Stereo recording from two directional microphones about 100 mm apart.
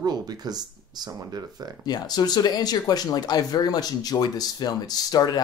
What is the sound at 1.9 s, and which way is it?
Speech, 40° left (ahead or behind).